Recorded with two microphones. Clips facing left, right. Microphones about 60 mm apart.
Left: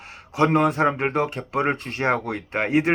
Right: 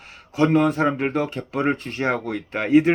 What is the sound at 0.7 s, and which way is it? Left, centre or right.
Speech, left.